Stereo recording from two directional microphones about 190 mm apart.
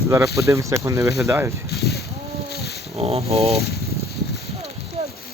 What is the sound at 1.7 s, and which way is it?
Boat, 55° left (ahead or behind).